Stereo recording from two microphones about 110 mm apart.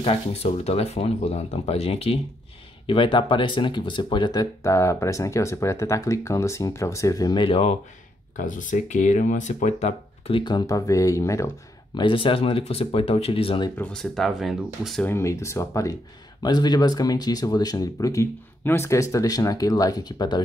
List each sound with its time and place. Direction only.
0.0 s speech: 70° left (ahead or behind)
2.9 s speech: 50° left (ahead or behind); by 7.3 s 30° left (ahead or behind)
7.3 s speech: 55° left (ahead or behind)
8.8 s speech: 90° left; by 10.4 s 75° left (ahead or behind)
10.4 s speech: 35° left (ahead or behind)
11.9 s speech: 45° left (ahead or behind)
13.7 s speech: 10° left (ahead or behind)
15.0 s speech: 25° left (ahead or behind)
16.4 s speech: 40° left (ahead or behind)